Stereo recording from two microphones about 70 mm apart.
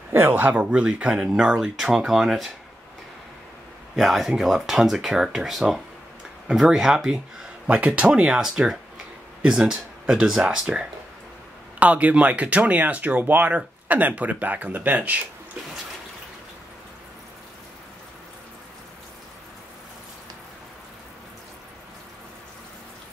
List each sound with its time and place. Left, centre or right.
0.1 s speech: right; by 2.5 s centre
3.9 s speech: centre
7.6 s speech: centre
8.3 s speech: centre; by 15.2 s right